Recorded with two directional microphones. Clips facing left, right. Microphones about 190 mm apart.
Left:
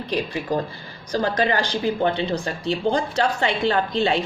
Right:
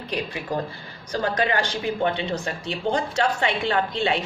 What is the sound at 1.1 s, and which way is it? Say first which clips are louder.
Speech: left 2 dB; 30° left (ahead or behind).